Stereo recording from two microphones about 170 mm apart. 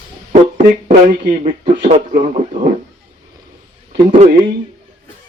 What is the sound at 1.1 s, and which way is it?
Speech, 50° right (ahead or behind).